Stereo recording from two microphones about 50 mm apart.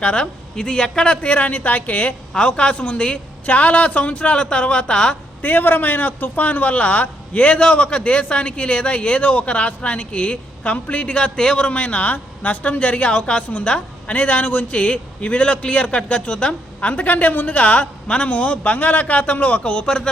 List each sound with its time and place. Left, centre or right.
0.0 s a man's voice: centre
5.4 s a man's voice: left; by 20.1 s centre